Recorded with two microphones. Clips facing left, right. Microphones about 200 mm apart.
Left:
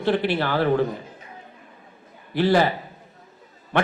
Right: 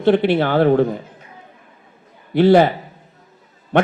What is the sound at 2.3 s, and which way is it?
Speech, 55° right (ahead or behind).